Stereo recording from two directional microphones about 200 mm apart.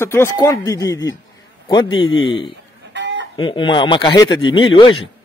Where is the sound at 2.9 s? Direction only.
60° right (ahead or behind).